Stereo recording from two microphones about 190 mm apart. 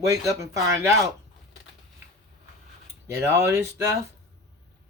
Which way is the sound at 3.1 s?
15° right (ahead or behind).